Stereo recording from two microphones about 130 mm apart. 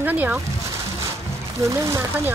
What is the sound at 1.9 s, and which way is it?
Speech, 20° right (ahead or behind).